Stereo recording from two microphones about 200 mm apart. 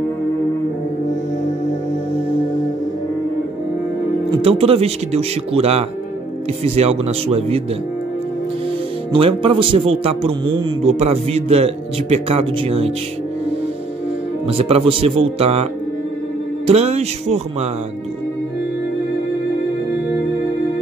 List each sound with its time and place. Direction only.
4.3 s speech: 30° right (ahead or behind)
9.1 s a man's voice: 25° right (ahead or behind)
14.5 s a man's voice: 30° right (ahead or behind)
16.6 s speech: 30° right (ahead or behind)